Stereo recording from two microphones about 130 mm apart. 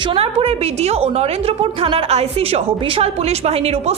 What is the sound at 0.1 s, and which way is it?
A woman's voice, 50° right (ahead or behind).